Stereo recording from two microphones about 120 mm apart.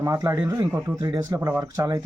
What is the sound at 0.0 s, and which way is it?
Speech, 25° right (ahead or behind).